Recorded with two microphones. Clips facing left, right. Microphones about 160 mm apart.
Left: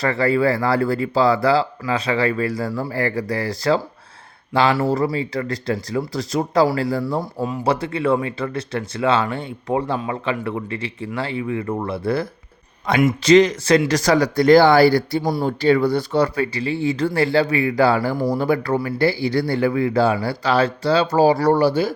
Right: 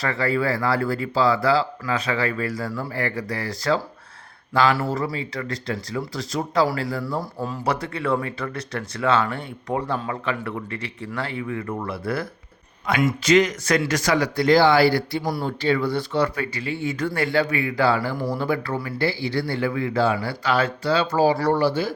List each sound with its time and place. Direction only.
0.0 s speech: 35° left (ahead or behind)
15.2 s speech: 25° left (ahead or behind)
15.4 s speech: 40° left (ahead or behind)